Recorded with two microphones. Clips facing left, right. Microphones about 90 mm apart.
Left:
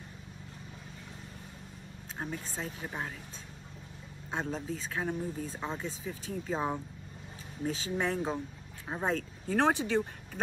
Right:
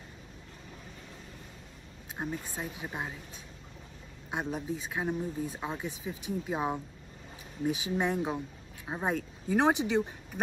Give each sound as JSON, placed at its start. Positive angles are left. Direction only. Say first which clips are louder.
{"t": 2.1, "sound": "speech", "louder": "right 2 dB", "side_deg": -15}
{"t": 4.3, "sound": "speech", "louder": "right 1 dB", "side_deg": -15}